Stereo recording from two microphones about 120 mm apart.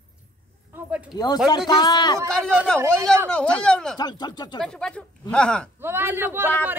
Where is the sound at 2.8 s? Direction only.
20° right (ahead or behind).